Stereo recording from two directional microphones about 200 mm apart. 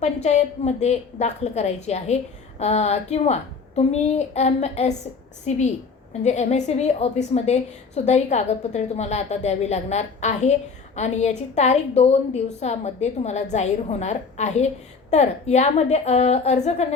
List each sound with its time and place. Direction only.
0.0 s a woman's voice: 35° left (ahead or behind)